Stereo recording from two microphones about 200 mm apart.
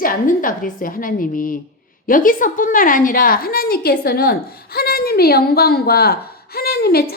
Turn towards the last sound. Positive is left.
turn(degrees=50)  # may be behind; listen again after turning